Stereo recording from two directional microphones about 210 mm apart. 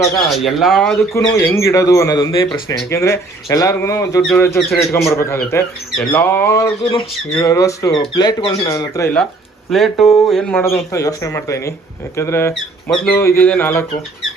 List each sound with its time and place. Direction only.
0.3 s speech: centre (ahead or behind)
1.1 s speech: 15° left (ahead or behind)
4.9 s speech: 15° left (ahead or behind)
9.6 s speech: centre (ahead or behind)